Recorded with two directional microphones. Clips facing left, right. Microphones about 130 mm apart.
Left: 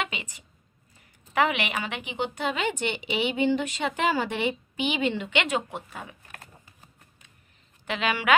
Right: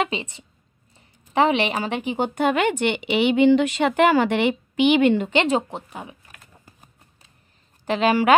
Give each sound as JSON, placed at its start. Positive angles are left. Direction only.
{"t": 0.0, "sound": "a woman's voice", "side_deg": -30}
{"t": 5.1, "sound": "a woman's voice", "side_deg": -40}
{"t": 5.7, "sound": "speech", "side_deg": -20}
{"t": 7.8, "sound": "a woman's voice", "side_deg": -35}